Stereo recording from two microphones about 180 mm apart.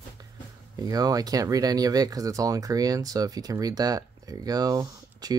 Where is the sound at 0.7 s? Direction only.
20° right (ahead or behind).